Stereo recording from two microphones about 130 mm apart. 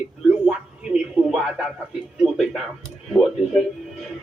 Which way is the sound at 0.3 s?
10° right (ahead or behind).